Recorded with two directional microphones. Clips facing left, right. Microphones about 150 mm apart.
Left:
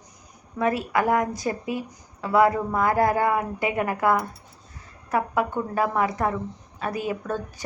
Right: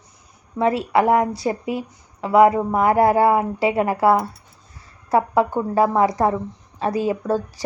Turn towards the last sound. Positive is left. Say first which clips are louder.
# right 7 dB
turn(degrees=-35)  # may be behind; listen again after turning